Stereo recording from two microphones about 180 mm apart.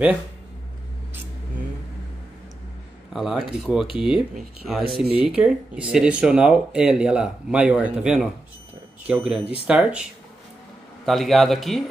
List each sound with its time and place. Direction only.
3.1 s speech: centre (ahead or behind)
11.1 s speech: centre (ahead or behind)